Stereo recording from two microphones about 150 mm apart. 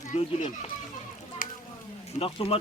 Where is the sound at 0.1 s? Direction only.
40° left (ahead or behind).